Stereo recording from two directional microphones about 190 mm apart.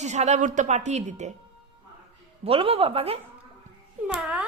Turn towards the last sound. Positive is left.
turn(degrees=-5)  # may be behind; listen again after turning